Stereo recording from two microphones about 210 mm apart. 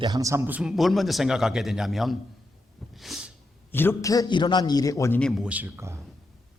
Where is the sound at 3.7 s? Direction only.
10° left (ahead or behind); by 6.0 s 15° right (ahead or behind).